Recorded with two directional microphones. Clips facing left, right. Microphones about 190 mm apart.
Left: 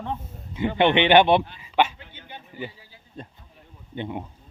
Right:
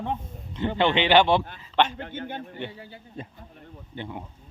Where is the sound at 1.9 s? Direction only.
60° right (ahead or behind).